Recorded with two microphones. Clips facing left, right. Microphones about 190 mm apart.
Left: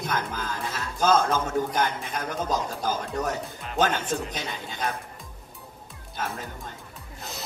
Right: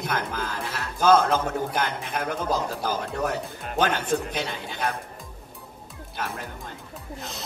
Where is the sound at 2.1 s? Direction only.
55° right (ahead or behind).